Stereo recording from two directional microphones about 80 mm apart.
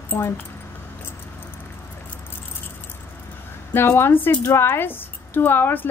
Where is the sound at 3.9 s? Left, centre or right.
Left.